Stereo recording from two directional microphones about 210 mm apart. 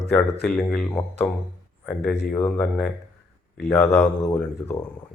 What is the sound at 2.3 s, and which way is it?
Speech, 10° left (ahead or behind).